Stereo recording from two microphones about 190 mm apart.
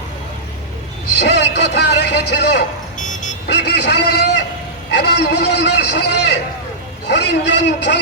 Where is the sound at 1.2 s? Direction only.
65° left (ahead or behind).